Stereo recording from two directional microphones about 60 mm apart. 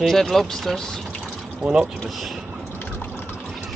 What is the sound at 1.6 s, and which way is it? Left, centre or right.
Speech, centre.